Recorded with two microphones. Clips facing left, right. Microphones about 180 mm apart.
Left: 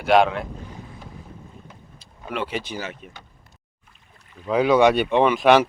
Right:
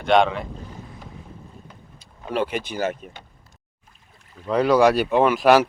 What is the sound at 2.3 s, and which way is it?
Speech, 45° right (ahead or behind).